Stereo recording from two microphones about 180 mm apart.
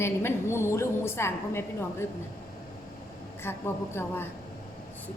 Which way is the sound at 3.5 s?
10° left (ahead or behind).